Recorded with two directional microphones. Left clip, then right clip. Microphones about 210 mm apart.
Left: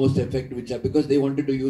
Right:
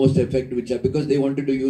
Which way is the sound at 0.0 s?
50° right (ahead or behind).